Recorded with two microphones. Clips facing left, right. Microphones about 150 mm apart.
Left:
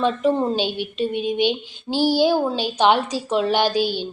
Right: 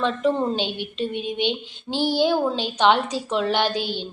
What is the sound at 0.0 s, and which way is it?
A woman's voice, 10° left (ahead or behind).